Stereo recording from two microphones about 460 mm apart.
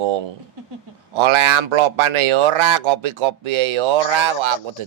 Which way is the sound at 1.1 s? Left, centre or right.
Right.